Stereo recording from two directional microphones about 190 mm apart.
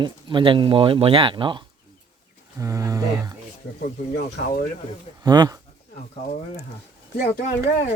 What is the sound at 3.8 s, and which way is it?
Speech, 55° left (ahead or behind).